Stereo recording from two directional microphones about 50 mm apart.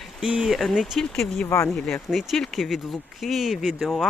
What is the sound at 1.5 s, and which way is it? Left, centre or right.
Speech, left.